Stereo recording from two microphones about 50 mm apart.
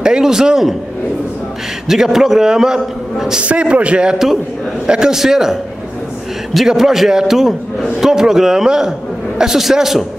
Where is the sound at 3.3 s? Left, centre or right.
Right.